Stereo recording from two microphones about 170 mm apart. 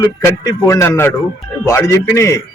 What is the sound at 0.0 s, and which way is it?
Speech, 15° left (ahead or behind).